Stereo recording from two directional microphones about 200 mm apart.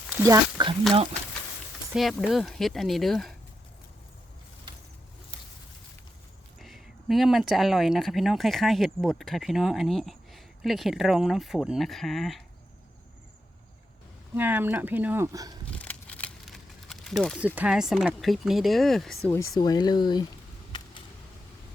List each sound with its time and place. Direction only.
0.1 s speech: 15° right (ahead or behind)
1.9 s speech: centre (ahead or behind)
6.6 s speech: centre (ahead or behind)
14.3 s speech: 10° right (ahead or behind)
15.7 s speech: 5° left (ahead or behind)